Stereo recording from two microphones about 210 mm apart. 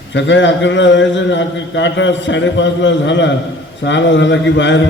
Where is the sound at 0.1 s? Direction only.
60° left (ahead or behind).